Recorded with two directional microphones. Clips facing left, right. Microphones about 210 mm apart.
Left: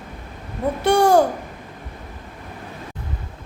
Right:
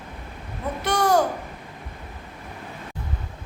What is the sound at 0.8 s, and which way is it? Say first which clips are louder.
Speech: left 6 dB; 30° left (ahead or behind).